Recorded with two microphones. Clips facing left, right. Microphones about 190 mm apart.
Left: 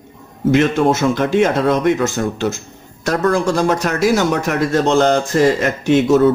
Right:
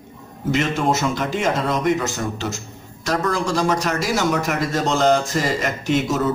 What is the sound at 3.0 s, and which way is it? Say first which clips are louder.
Speech: left 6 dB; 55° left (ahead or behind).